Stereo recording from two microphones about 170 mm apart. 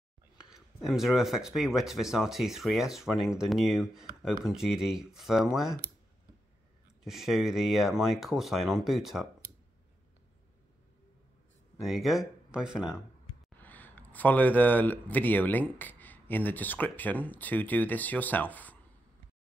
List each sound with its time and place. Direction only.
0.4 s speech: 5° right (ahead or behind)
7.1 s speech: centre (ahead or behind)
11.9 s speech: centre (ahead or behind)
13.6 s speech: 10° left (ahead or behind)